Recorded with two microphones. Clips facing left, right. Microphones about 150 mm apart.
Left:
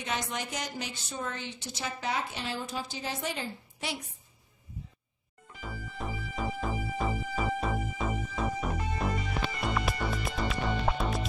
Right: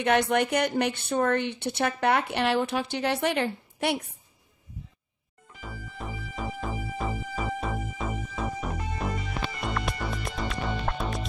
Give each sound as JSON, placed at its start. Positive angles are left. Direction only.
{"t": 0.0, "sound": "a woman's voice", "side_deg": -65}
{"t": 5.5, "sound": "music", "side_deg": 0}